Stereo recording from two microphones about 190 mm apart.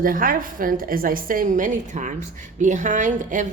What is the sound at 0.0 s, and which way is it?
A woman's voice, 45° right (ahead or behind).